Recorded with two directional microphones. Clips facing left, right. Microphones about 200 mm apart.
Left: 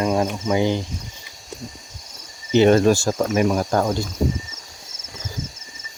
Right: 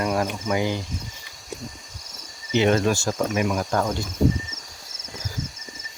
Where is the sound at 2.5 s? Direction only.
40° left (ahead or behind).